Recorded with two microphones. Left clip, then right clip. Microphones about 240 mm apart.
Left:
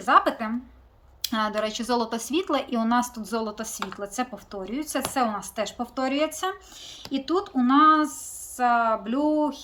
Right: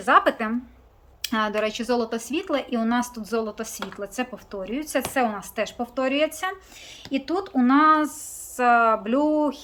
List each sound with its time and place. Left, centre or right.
0.0 s speech: centre